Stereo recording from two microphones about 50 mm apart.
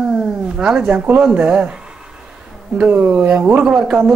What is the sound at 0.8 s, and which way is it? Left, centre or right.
Speech, right.